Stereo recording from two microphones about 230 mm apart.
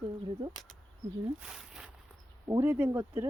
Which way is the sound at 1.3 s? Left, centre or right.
Centre.